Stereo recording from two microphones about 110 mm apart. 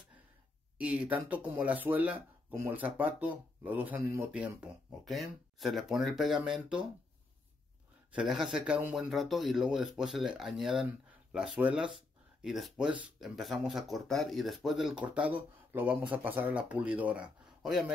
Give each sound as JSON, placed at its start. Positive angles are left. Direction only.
{"t": 0.7, "sound": "speech", "side_deg": -10}
{"t": 2.5, "sound": "speech", "side_deg": -25}
{"t": 5.0, "sound": "speech", "side_deg": 0}
{"t": 8.1, "sound": "speech", "side_deg": -5}